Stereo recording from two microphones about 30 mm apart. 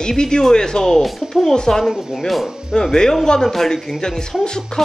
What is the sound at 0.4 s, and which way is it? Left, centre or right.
Speech, left.